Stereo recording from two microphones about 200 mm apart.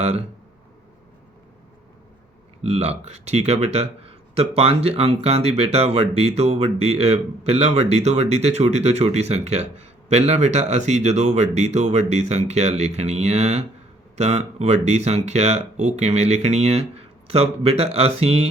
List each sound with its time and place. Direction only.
0.0 s speech: 30° right (ahead or behind)
2.6 s speech: 30° right (ahead or behind)